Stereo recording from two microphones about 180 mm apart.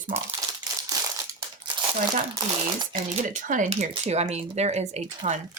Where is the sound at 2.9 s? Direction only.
45° right (ahead or behind).